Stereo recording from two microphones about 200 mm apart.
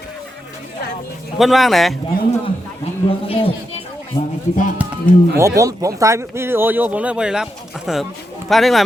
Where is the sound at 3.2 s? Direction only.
30° left (ahead or behind).